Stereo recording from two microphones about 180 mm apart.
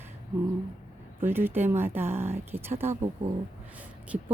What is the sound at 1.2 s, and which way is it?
Speech, 10° right (ahead or behind).